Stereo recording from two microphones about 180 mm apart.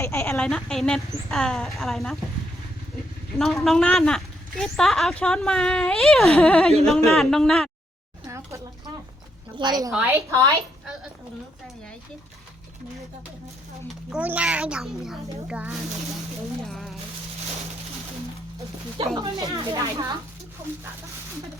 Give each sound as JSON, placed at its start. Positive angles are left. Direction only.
{"t": 0.0, "sound": "a woman's voice", "side_deg": 15}
{"t": 0.3, "sound": "speech", "side_deg": 5}
{"t": 3.3, "sound": "speech", "side_deg": 0}
{"t": 8.3, "sound": "a sound", "side_deg": -15}
{"t": 9.6, "sound": "speech", "side_deg": -25}
{"t": 9.9, "sound": "a woman's voice", "side_deg": -10}
{"t": 14.1, "sound": "speech", "side_deg": -10}
{"t": 16.6, "sound": "a sound", "side_deg": 0}
{"t": 19.1, "sound": "speech", "side_deg": -20}